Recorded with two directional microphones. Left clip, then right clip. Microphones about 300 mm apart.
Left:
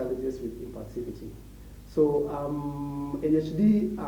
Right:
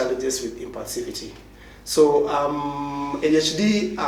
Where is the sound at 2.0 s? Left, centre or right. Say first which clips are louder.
Right 8 dB; centre.